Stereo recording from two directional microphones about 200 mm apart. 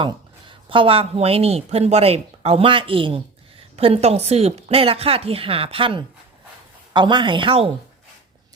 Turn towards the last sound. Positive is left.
turn(degrees=-25)  # may be behind; listen again after turning